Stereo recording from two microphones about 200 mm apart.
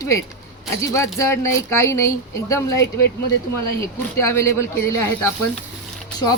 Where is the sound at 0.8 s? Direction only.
15° left (ahead or behind).